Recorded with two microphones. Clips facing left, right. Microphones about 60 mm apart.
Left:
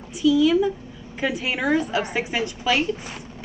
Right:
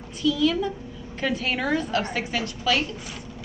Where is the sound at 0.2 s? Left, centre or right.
Centre.